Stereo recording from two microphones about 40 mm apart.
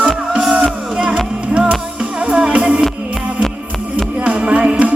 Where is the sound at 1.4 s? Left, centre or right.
Right.